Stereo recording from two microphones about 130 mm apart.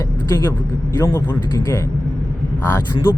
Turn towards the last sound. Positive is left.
turn(degrees=20)  # may be behind; listen again after turning